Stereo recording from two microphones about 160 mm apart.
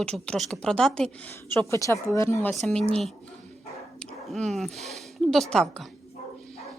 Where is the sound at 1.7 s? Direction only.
20° left (ahead or behind).